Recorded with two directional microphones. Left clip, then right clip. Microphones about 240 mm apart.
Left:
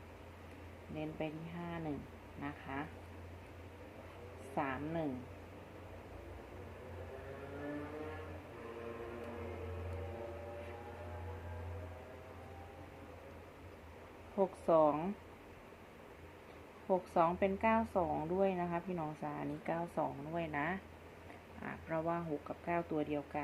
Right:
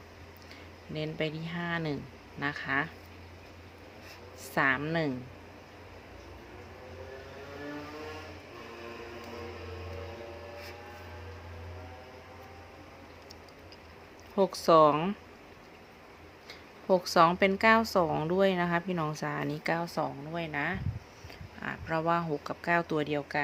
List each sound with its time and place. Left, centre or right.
0.9 s a woman's voice: right
4.5 s a woman's voice: right
14.3 s a woman's voice: right
16.9 s a woman's voice: right
20.3 s speech: centre
21.6 s a woman's voice: right